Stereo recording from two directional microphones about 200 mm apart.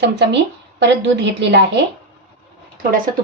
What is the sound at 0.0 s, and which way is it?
Speech, 60° right (ahead or behind).